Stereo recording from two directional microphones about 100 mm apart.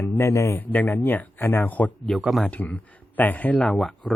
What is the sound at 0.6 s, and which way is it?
Speech, 15° left (ahead or behind).